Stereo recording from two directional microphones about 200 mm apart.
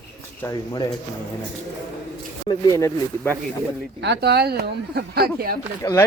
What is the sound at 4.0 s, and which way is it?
Speech, 55° right (ahead or behind).